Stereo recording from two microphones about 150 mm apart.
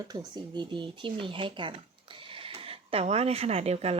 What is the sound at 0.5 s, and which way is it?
Speech, 30° right (ahead or behind).